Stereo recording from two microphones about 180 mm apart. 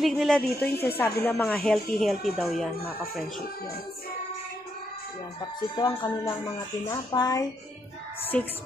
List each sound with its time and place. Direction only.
0.0 s speech: centre (ahead or behind)
0.6 s a woman's voice: 10° left (ahead or behind)
1.4 s speech: 5° left (ahead or behind)
5.8 s speech: 25° left (ahead or behind)
8.3 s speech: 5° left (ahead or behind)